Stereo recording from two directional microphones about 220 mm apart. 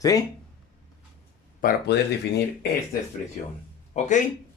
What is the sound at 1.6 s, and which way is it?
Speech, 50° left (ahead or behind).